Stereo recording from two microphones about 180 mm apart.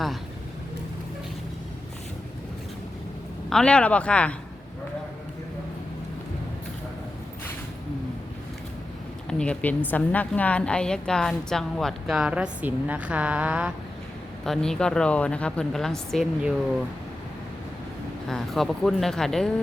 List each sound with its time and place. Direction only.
3.5 s speech: 5° left (ahead or behind)
9.4 s a woman's voice: 5° left (ahead or behind)
18.3 s a woman's voice: centre (ahead or behind)